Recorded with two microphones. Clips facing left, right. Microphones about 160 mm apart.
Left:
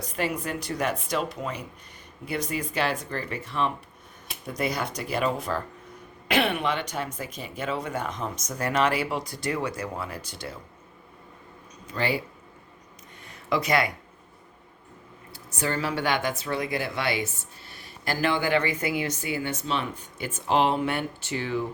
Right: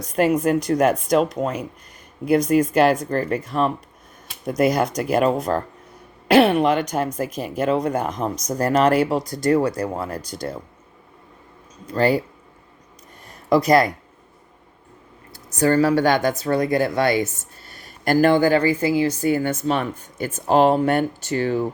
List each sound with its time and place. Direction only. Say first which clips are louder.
0.0 s speech: right 11 dB; 45° right (ahead or behind)
11.9 s speech: right 9 dB; 40° right (ahead or behind)
13.2 s a sound: right 9 dB; 40° right (ahead or behind)
15.3 s speech: right 11 dB; 40° right (ahead or behind)